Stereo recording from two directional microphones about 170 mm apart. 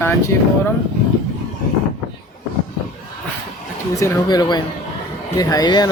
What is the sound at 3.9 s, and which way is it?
Speech, 20° left (ahead or behind).